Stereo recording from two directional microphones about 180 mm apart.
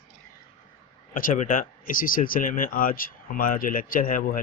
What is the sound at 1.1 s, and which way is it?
Speech, 50° left (ahead or behind).